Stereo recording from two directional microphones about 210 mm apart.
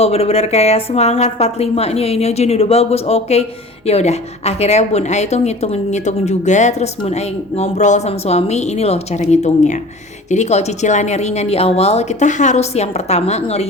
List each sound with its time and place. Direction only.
0.0 s a woman's voice: 30° left (ahead or behind)